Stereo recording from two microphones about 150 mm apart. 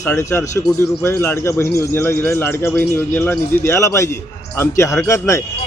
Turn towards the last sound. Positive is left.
turn(degrees=20)  # may be behind; listen again after turning